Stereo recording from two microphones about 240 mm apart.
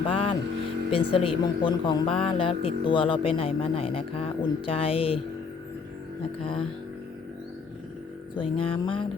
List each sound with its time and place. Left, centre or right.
0.1 s music: left
0.9 s speech: left
8.4 s speech: left